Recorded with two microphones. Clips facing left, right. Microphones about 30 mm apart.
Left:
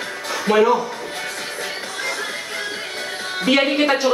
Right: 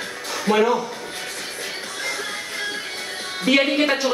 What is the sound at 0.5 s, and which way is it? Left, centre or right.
Speech, left.